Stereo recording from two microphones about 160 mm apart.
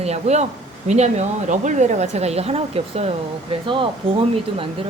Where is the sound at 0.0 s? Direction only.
45° right (ahead or behind).